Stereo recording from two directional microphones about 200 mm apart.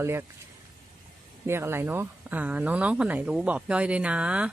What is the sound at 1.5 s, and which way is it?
Speech, 10° right (ahead or behind).